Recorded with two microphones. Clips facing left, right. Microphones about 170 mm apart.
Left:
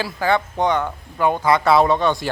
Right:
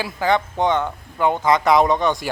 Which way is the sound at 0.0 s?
20° right (ahead or behind).